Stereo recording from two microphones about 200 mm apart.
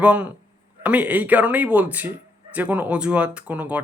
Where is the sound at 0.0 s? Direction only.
5° right (ahead or behind).